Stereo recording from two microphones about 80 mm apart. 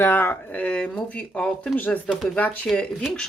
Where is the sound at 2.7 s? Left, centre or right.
Centre.